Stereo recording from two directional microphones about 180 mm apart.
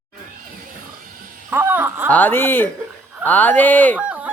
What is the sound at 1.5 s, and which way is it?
Wail, 10° right (ahead or behind).